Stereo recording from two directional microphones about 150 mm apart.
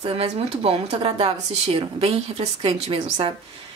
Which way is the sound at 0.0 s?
40° right (ahead or behind).